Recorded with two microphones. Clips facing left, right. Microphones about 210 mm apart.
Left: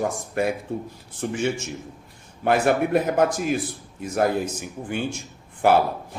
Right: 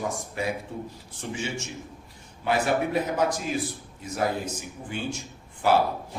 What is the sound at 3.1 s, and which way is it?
Speech, 55° left (ahead or behind).